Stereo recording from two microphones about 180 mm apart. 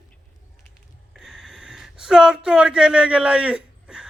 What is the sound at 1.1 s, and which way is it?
Speech, centre (ahead or behind).